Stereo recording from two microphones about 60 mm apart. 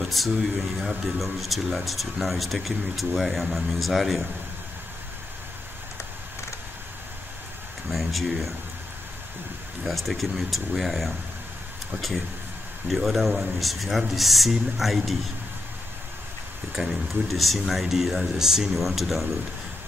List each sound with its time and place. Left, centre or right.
0.1 s speech: centre
7.9 s speech: centre
9.8 s speech: centre
12.9 s speech: centre
16.8 s speech: centre
17.1 s speech: centre